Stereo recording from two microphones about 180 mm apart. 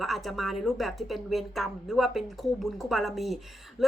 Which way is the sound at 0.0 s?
Centre (ahead or behind).